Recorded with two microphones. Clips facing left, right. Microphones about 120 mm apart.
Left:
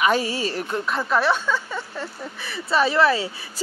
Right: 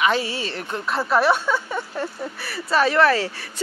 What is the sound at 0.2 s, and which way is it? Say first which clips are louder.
Speech: left 2 dB; 40° left (ahead or behind).